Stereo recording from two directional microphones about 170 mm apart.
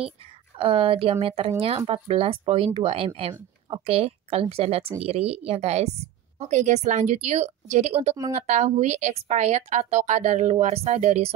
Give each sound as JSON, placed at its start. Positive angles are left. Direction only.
{"t": 0.6, "sound": "speech", "side_deg": -30}